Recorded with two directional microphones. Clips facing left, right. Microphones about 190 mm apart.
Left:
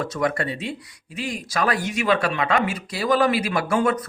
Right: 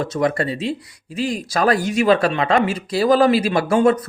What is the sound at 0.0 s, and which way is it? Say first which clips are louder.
Speech: right 4 dB; 25° right (ahead or behind).